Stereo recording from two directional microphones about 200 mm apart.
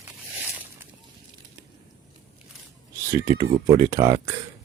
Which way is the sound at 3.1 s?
15° right (ahead or behind).